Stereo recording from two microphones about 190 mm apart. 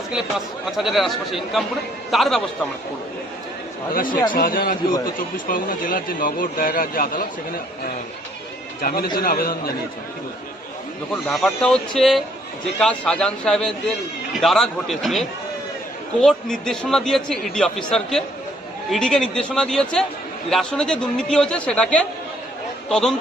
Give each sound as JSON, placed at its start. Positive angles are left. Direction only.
{"t": 0.8, "sound": "a man's voice", "side_deg": 0}
{"t": 3.9, "sound": "speech", "side_deg": 45}
{"t": 8.8, "sound": "speech", "side_deg": 45}
{"t": 11.1, "sound": "a man's voice", "side_deg": 5}
{"t": 16.2, "sound": "a man's voice", "side_deg": 5}